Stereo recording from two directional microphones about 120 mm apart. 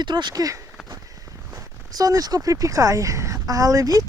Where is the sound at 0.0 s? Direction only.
40° right (ahead or behind).